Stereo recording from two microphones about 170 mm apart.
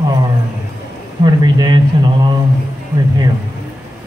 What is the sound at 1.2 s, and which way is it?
Speech, 25° right (ahead or behind).